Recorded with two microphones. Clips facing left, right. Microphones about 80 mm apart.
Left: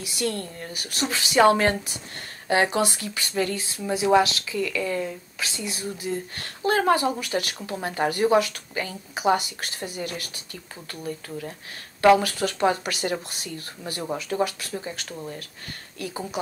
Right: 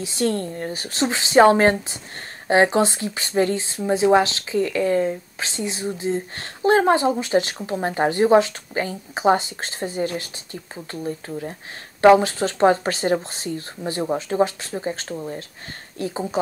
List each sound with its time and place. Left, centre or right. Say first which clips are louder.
0.0 s speech: right 6 dB; right